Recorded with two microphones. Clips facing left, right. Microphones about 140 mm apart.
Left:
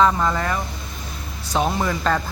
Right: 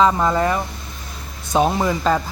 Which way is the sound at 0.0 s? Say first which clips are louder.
Right 2 dB; 15° right (ahead or behind).